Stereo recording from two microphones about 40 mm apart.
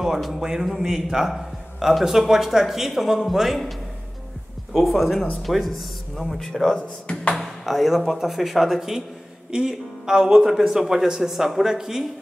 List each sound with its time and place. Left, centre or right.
0.4 s a man's voice: centre
4.7 s speech: centre
6.8 s speech: left
7.3 s a man's voice: centre